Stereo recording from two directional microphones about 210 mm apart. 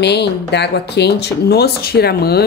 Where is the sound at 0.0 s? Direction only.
55° left (ahead or behind).